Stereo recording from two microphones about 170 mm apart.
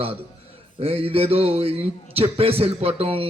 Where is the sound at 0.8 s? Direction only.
35° right (ahead or behind).